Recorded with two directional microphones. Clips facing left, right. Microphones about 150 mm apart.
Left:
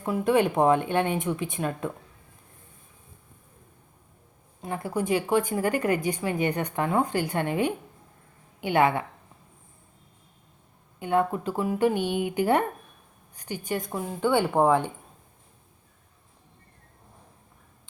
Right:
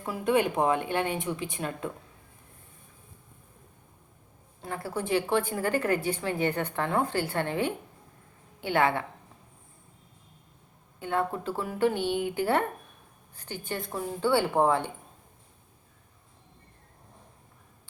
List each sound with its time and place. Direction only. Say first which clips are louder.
0.0 s speech: left 3 dB; 25° left (ahead or behind)
4.6 s a woman's voice: left 4 dB; 20° left (ahead or behind)
11.0 s a woman's voice: left 4 dB; 15° left (ahead or behind)